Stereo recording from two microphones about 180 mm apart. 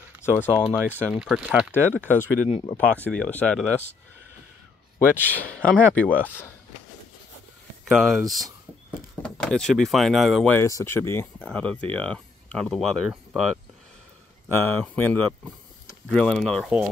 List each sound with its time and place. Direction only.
0.2 s speech: 10° left (ahead or behind)
0.8 s speech: 5° right (ahead or behind)
2.4 s speech: 40° left (ahead or behind)
3.0 s speech: 5° left (ahead or behind)
4.9 s speech: 10° left (ahead or behind)
7.9 s speech: centre (ahead or behind)
10.5 s speech: 15° left (ahead or behind); by 13.4 s centre (ahead or behind)
14.5 s speech: 15° left (ahead or behind)